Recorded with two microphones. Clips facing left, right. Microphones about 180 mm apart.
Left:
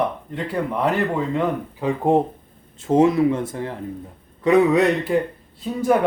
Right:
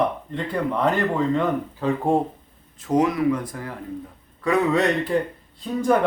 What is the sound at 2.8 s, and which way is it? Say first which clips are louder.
Speech: left 4 dB; 25° left (ahead or behind).